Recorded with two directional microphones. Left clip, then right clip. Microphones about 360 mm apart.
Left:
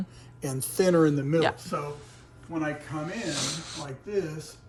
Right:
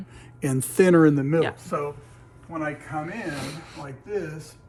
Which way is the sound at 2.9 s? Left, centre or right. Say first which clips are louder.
Right 2 dB; centre.